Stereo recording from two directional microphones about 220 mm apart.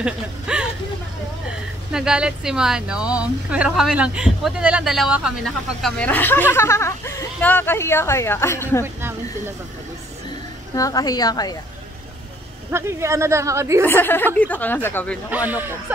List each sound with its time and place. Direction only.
0.0 s speech: 5° right (ahead or behind)
1.9 s speech: 5° right (ahead or behind)
10.7 s speech: 15° left (ahead or behind)
12.7 s speech: 10° right (ahead or behind)
13.8 s speech: 10° left (ahead or behind)
15.3 s speech: 10° right (ahead or behind)